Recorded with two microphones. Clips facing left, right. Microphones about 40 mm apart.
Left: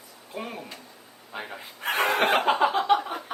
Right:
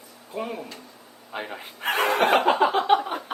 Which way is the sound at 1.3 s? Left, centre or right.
Right.